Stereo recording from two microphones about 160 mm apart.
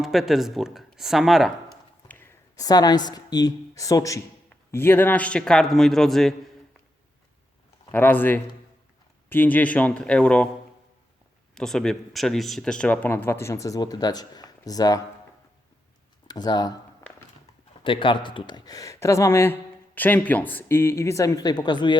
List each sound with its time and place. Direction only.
0.0 s a man's voice: centre (ahead or behind)
2.0 s a woman's voice: 15° left (ahead or behind)
7.9 s speech: 10° left (ahead or behind)
11.5 s speech: 5° left (ahead or behind); by 15.0 s 25° left (ahead or behind)
16.2 s speech: 25° left (ahead or behind)
17.8 s speech: 30° left (ahead or behind)